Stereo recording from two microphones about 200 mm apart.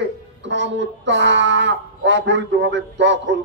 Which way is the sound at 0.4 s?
65° right (ahead or behind).